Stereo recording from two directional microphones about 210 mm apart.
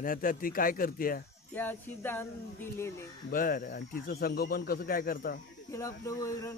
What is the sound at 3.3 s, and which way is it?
Speech, 40° left (ahead or behind).